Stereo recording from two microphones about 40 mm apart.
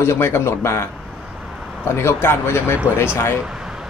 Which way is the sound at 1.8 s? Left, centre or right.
Left.